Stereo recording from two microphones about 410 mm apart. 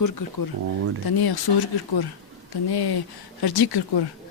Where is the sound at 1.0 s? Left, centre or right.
Left.